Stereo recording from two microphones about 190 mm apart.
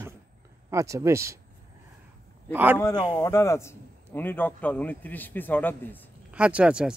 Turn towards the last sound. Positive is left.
turn(degrees=-5)  # may be behind; listen again after turning